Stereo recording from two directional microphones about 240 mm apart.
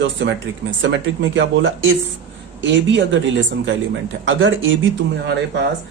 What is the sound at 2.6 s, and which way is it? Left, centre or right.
Speech, right.